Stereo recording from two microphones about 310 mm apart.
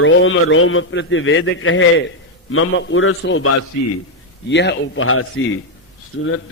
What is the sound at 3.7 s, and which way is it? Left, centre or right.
Speech, left.